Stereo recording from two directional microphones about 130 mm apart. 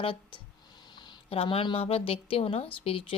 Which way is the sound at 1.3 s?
45° left (ahead or behind).